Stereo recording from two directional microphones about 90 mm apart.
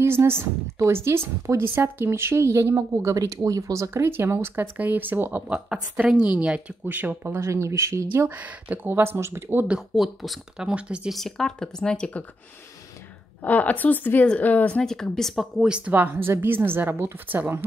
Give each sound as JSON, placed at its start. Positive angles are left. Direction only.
{"t": 0.0, "sound": "a woman's voice", "side_deg": -25}
{"t": 5.5, "sound": "speech", "side_deg": -10}
{"t": 7.3, "sound": "speech", "side_deg": -30}
{"t": 8.3, "sound": "a woman's voice", "side_deg": -15}
{"t": 9.7, "sound": "speech", "side_deg": -5}
{"t": 10.7, "sound": "speech", "side_deg": -10}
{"t": 11.1, "sound": "speech", "side_deg": 5}
{"t": 13.4, "sound": "a woman's voice", "side_deg": 20}
{"t": 14.8, "sound": "a woman's voice", "side_deg": 5}